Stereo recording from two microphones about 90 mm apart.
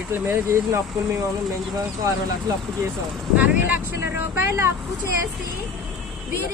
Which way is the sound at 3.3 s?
20° right (ahead or behind).